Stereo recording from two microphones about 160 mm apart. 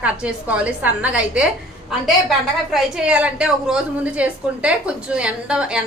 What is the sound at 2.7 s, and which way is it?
A woman's voice, 5° right (ahead or behind).